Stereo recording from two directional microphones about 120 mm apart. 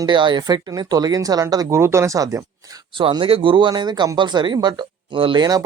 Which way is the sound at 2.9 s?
45° right (ahead or behind).